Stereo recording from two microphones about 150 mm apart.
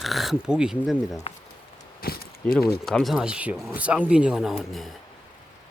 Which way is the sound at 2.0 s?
85° left.